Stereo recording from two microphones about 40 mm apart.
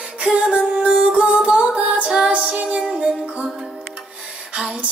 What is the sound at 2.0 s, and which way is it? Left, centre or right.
Music, centre.